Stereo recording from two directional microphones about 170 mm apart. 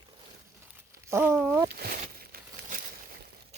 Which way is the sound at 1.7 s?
65° right (ahead or behind).